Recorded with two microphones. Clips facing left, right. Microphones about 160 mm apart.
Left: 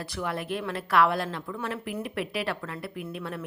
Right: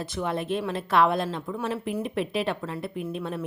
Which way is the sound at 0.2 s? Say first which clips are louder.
Right 3 dB; 25° right (ahead or behind).